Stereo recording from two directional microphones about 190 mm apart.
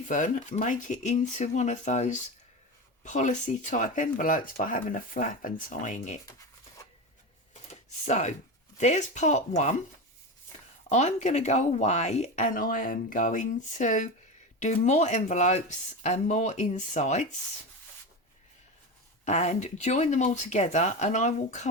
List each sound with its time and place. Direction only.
0.1 s speech: 40° left (ahead or behind)
7.7 s a sound: 40° left (ahead or behind)
8.8 s speech: 40° left (ahead or behind)
10.9 s speech: 40° left (ahead or behind)
19.2 s speech: 40° left (ahead or behind)